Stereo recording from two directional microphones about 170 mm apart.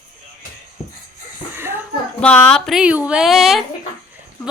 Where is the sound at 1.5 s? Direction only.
15° right (ahead or behind).